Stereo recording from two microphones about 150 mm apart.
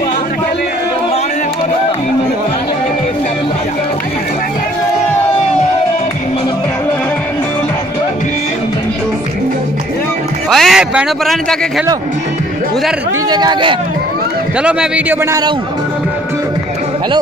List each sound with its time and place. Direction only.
10.5 s a sound: centre (ahead or behind)
13.3 s speech: 30° right (ahead or behind)
14.6 s a man's voice: 5° right (ahead or behind)